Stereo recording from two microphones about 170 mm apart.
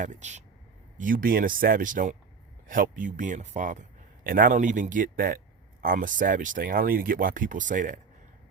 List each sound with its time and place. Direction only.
0.0 s speech: 45° right (ahead or behind)